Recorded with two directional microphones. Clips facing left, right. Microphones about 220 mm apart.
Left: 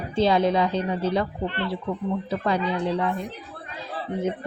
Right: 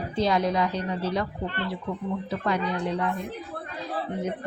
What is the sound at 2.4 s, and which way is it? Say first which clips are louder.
Speech: left 2 dB; 30° left (ahead or behind).